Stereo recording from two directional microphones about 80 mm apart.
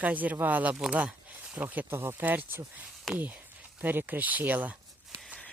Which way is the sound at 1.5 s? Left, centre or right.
Right.